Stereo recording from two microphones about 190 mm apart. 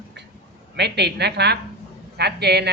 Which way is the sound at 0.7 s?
60° right (ahead or behind).